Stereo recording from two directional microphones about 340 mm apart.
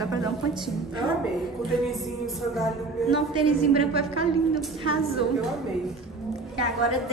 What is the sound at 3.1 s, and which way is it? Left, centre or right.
Speech, centre.